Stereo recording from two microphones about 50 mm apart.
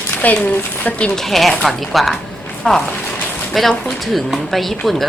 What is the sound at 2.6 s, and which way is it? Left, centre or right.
Speech, centre.